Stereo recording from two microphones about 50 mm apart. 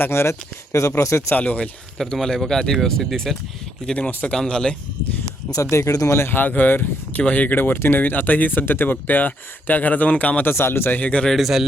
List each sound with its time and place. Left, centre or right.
0.1 s speech: left
1.3 s speech: left
2.1 s speech: centre
3.9 s speech: left
4.4 s speech: centre
5.7 s speech: left
6.2 s speech: left
10.4 s speech: left
10.9 s speech: left
11.3 s speech: centre